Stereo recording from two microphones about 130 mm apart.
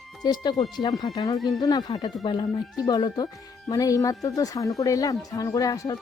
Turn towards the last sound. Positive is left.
turn(degrees=25)  # may be behind; listen again after turning